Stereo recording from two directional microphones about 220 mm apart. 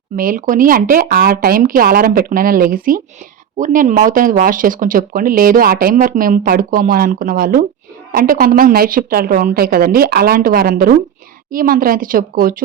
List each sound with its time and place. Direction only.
0.2 s speech: 40° right (ahead or behind)